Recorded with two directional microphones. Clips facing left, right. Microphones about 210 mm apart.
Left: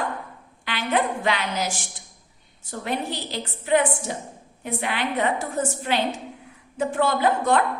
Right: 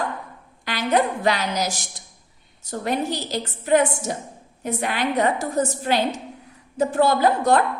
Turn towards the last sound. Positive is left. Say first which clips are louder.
# right 3 dB
turn(degrees=-40)  # may be behind; listen again after turning